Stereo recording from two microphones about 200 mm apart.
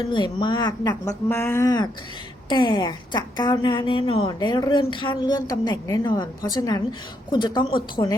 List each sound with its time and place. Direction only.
0.1 s a woman's voice: 25° left (ahead or behind)